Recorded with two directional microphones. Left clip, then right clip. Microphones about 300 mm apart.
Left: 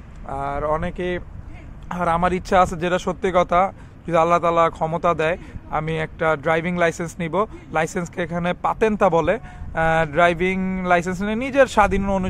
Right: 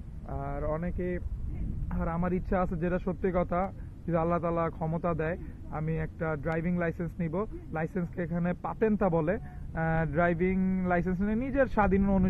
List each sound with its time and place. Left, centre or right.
0.3 s speech: centre